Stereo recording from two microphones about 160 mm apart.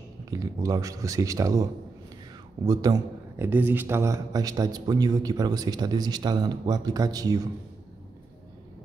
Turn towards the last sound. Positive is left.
turn(degrees=-25)  # may be behind; listen again after turning